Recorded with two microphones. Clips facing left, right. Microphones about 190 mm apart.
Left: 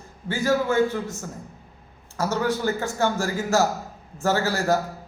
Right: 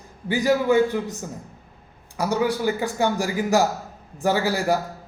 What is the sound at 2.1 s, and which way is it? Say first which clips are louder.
A woman's voice: right 2 dB; 15° right (ahead or behind).